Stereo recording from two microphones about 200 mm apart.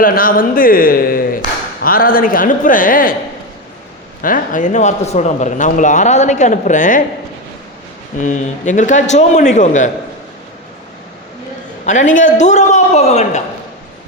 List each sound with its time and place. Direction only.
0.0 s speech: 45° left (ahead or behind)
4.2 s speech: 45° left (ahead or behind)
8.2 s speech: 40° left (ahead or behind)
11.9 s speech: 40° left (ahead or behind)